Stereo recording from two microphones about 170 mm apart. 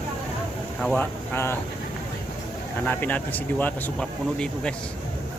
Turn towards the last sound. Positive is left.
turn(degrees=5)  # may be behind; listen again after turning